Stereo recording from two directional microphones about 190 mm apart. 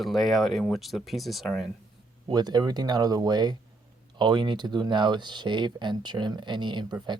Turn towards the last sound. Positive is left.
turn(degrees=-25)  # may be behind; listen again after turning